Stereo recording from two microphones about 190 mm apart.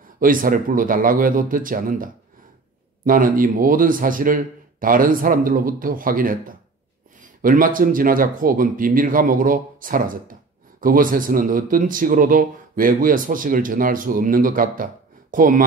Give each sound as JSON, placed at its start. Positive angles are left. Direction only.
{"t": 0.2, "sound": "speech", "side_deg": -45}
{"t": 3.1, "sound": "speech", "side_deg": -45}